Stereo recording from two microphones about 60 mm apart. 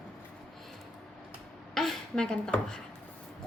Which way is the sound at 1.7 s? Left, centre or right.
Centre.